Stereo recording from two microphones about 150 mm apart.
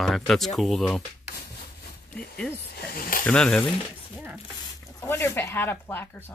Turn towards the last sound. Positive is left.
turn(degrees=15)  # may be behind; listen again after turning